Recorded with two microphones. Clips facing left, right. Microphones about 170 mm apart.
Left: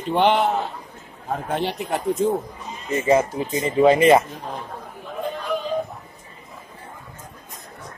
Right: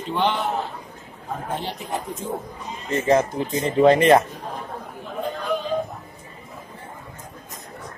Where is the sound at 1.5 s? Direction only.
70° left (ahead or behind).